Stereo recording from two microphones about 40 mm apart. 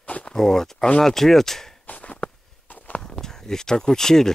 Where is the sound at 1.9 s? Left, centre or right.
Left.